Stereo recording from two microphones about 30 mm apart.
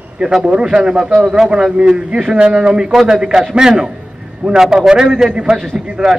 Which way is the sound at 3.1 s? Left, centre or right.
Right.